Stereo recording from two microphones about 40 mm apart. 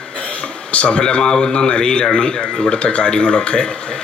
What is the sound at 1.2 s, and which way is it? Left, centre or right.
A man's voice, centre.